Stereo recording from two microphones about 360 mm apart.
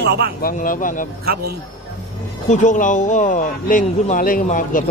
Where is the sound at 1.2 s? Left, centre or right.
Right.